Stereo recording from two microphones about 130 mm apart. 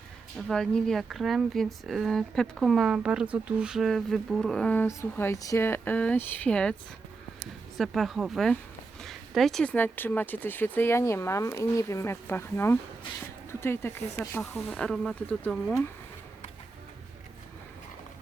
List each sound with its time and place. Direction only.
0.3 s speech: centre (ahead or behind)
4.9 s speech: 20° left (ahead or behind)
7.8 s speech: centre (ahead or behind); by 14.6 s 15° left (ahead or behind)
14.7 s speech: 5° left (ahead or behind)